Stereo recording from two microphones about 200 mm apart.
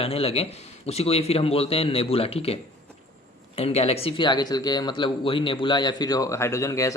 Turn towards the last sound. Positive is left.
turn(degrees=15)  # may be behind; listen again after turning